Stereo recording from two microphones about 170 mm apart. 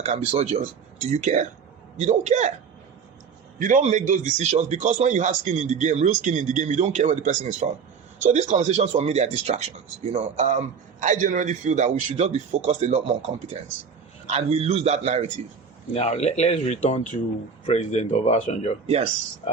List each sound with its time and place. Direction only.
0.0 s a man's voice: 40° right (ahead or behind)
3.6 s a man's voice: 45° right (ahead or behind)
15.9 s speech: 40° left (ahead or behind)